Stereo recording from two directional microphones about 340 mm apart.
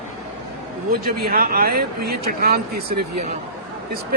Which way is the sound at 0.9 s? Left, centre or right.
Right.